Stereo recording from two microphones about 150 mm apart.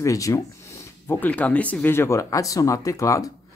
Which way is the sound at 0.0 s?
20° left (ahead or behind).